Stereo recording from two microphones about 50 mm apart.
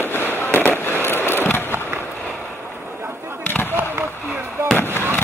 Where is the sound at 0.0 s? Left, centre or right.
Left.